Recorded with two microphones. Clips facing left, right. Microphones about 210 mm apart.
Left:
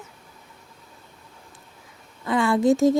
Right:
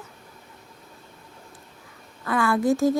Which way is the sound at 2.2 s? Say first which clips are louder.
Left 2 dB; 20° left (ahead or behind).